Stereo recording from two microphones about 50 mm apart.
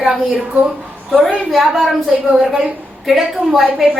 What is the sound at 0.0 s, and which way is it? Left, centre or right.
Speech, centre.